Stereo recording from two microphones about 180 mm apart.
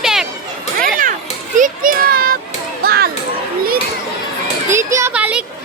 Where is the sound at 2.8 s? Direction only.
60° right (ahead or behind).